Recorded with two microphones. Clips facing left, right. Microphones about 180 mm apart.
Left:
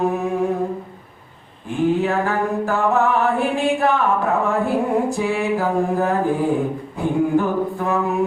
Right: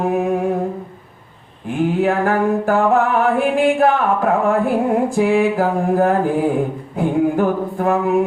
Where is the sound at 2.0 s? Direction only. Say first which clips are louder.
Right 4 dB; 50° right (ahead or behind).